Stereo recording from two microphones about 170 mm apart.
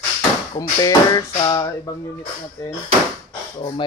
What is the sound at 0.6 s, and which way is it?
Speech, 20° left (ahead or behind).